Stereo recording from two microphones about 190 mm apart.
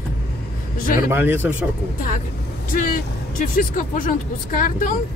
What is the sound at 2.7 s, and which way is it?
Speech, 45° left (ahead or behind).